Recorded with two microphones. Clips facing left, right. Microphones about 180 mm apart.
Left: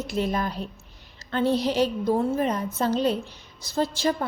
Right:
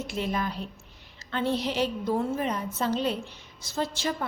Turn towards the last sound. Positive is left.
turn(degrees=35)  # may be behind; listen again after turning